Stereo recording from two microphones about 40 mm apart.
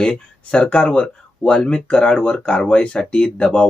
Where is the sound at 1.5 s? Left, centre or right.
Left.